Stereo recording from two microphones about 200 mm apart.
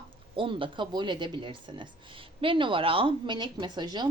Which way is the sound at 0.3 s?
25° right (ahead or behind).